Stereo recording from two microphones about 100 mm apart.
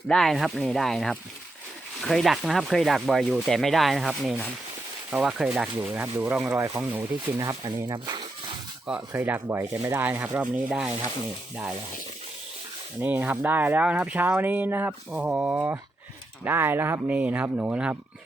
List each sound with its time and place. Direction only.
0.1 s speech: 5° left (ahead or behind)
5.7 s speech: 15° right (ahead or behind)
7.3 s speech: 35° right (ahead or behind)
7.9 s a sound: 50° right (ahead or behind)
8.9 s speech: 15° right (ahead or behind)
9.7 s speech: 35° right (ahead or behind)
10.0 s speech: 20° right (ahead or behind)
13.0 s speech: 15° right (ahead or behind)